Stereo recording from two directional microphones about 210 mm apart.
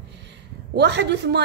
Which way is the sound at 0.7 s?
55° right (ahead or behind).